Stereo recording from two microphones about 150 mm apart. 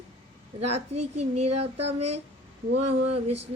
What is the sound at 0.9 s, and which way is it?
Speech, 45° right (ahead or behind).